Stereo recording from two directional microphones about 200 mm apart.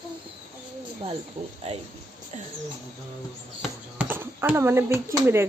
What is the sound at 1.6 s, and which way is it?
Speech, 30° right (ahead or behind).